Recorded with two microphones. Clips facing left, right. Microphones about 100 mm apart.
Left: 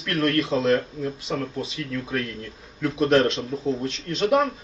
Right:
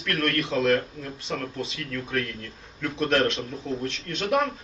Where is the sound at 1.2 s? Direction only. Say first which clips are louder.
Right 1 dB; 5° left (ahead or behind).